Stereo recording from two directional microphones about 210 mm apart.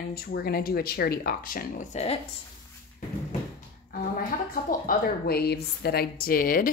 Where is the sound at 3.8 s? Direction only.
40° left (ahead or behind).